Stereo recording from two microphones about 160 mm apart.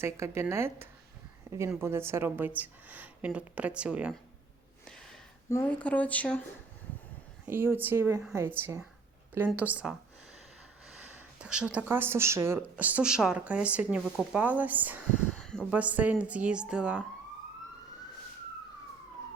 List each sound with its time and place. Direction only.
0.0 s speech: 15° right (ahead or behind)
4.9 s a sound: 5° left (ahead or behind)
5.5 s speech: 15° left (ahead or behind)
7.4 s speech: 15° right (ahead or behind)
15.3 s a sound: 5° left (ahead or behind)
15.7 s speech: 10° right (ahead or behind)